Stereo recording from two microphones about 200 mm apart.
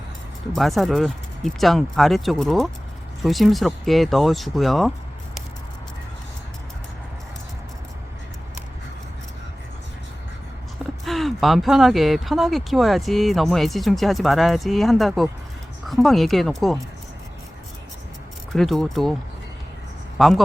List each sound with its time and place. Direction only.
0.5 s speech: centre (ahead or behind)
11.0 s speech: centre (ahead or behind)
18.5 s speech: centre (ahead or behind)
20.1 s speech: centre (ahead or behind)